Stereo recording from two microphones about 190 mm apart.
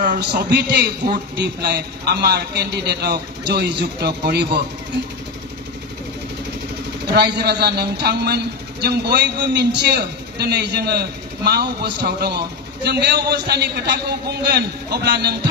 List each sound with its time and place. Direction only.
0.0 s a man's voice: 55° right (ahead or behind)
7.2 s a man's voice: 60° right (ahead or behind)